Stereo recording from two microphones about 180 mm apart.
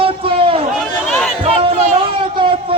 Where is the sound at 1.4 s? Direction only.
30° right (ahead or behind).